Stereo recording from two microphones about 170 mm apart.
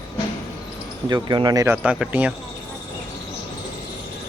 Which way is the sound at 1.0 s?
25° right (ahead or behind).